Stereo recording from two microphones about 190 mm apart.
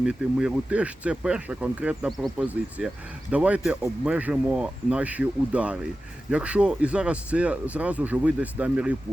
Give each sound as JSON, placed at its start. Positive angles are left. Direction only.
{"t": 0.0, "sound": "speech", "side_deg": -5}